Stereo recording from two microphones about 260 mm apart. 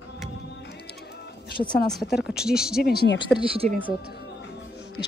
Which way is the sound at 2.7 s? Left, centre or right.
Left.